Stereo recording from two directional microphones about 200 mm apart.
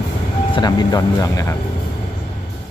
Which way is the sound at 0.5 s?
20° left (ahead or behind).